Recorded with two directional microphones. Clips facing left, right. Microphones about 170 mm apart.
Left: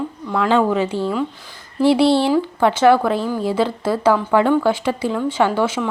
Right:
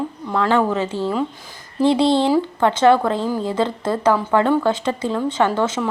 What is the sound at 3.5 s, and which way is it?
A woman's voice, 10° left (ahead or behind).